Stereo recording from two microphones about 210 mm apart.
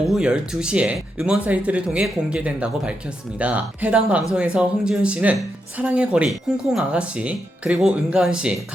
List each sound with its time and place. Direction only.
0.1 s speech: centre (ahead or behind)